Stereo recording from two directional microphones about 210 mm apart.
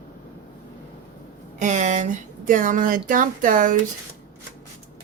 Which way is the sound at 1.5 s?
35° right (ahead or behind).